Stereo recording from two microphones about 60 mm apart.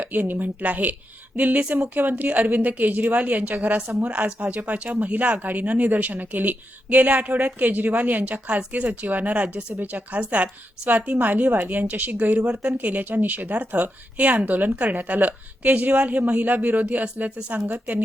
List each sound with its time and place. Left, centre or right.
0.0 s a woman's voice: right